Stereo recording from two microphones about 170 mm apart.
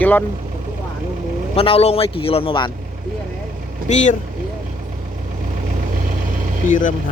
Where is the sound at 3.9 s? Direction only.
45° left (ahead or behind).